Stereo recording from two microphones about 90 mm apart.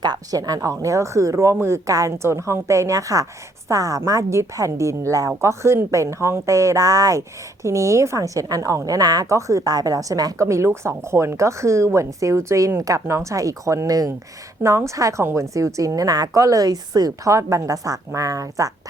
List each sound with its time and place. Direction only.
0.0 s a woman's voice: 45° right (ahead or behind)